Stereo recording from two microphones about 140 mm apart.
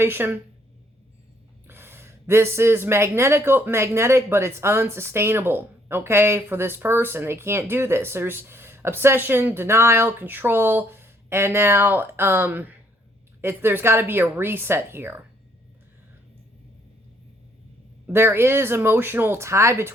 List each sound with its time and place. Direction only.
0.0 s speech: 15° right (ahead or behind)
1.6 s speech: 15° right (ahead or behind)
18.0 s speech: 15° right (ahead or behind)